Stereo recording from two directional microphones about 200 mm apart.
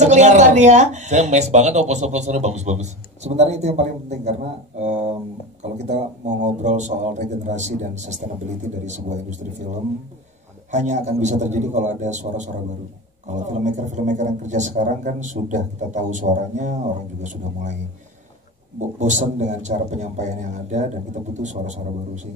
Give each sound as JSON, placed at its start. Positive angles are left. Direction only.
{"t": 0.0, "sound": "speech", "side_deg": -35}
{"t": 10.7, "sound": "speech", "side_deg": -35}
{"t": 18.8, "sound": "speech", "side_deg": -35}